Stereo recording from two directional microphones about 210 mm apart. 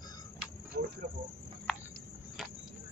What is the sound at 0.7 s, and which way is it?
Cricket, 50° right (ahead or behind).